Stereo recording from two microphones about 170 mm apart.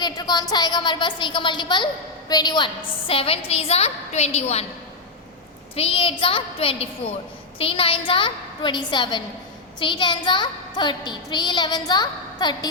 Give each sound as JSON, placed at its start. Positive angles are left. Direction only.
{"t": 0.0, "sound": "a child's voice", "side_deg": 25}
{"t": 5.7, "sound": "a woman's voice", "side_deg": 35}